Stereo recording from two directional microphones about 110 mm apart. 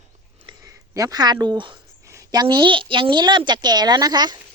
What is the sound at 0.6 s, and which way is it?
Speech, 30° right (ahead or behind).